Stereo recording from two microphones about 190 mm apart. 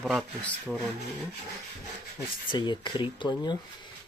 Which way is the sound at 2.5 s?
25° left (ahead or behind).